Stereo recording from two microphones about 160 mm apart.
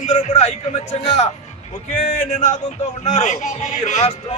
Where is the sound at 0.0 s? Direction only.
45° left (ahead or behind).